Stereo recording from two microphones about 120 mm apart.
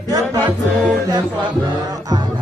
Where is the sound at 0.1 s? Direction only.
30° right (ahead or behind).